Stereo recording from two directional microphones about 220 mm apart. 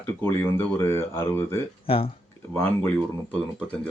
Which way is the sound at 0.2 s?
10° left (ahead or behind).